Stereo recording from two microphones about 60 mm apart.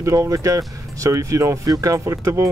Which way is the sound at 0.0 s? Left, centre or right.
Right.